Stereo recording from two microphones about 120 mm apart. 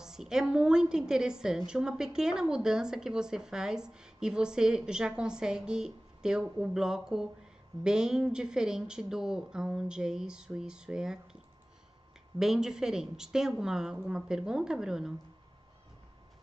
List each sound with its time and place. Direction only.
0.0 s speech: 5° right (ahead or behind)
12.4 s speech: 5° right (ahead or behind)